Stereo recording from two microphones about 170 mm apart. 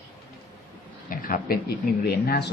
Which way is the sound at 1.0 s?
55° left (ahead or behind).